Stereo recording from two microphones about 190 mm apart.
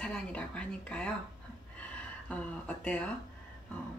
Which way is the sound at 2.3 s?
5° left (ahead or behind).